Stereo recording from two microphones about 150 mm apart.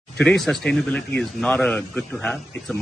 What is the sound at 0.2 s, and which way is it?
A man's voice, 5° left (ahead or behind).